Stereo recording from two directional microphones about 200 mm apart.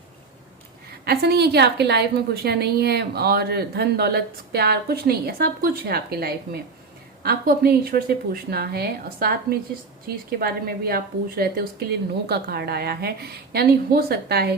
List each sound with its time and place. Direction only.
1.0 s a woman's voice: 50° right (ahead or behind)